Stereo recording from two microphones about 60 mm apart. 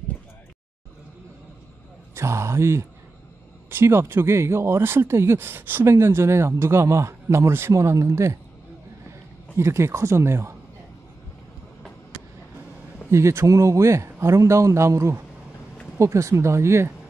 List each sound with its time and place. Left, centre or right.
2.1 s speech: right
7.7 s speech: right
9.6 s speech: right
13.1 s speech: right